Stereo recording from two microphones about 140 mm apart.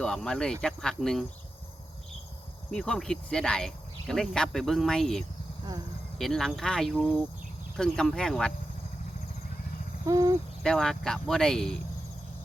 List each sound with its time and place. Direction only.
0.0 s cricket: 5° left (ahead or behind)
2.6 s cricket: 5° left (ahead or behind)
10.1 s cricket: 25° right (ahead or behind)
10.6 s cricket: 5° left (ahead or behind)